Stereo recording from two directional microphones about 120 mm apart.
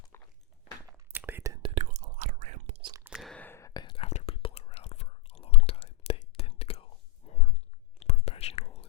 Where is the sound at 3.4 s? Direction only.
20° left (ahead or behind).